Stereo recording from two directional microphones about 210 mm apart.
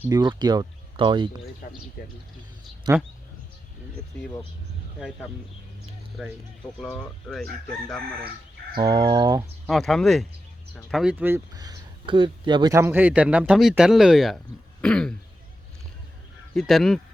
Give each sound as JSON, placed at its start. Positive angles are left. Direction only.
{"t": 0.0, "sound": "speech", "side_deg": -20}
{"t": 1.6, "sound": "speech", "side_deg": 40}
{"t": 2.9, "sound": "speech", "side_deg": -5}
{"t": 6.2, "sound": "speech", "side_deg": 0}
{"t": 8.7, "sound": "a sound", "side_deg": -20}
{"t": 9.6, "sound": "speech", "side_deg": 0}
{"t": 16.6, "sound": "speech", "side_deg": 0}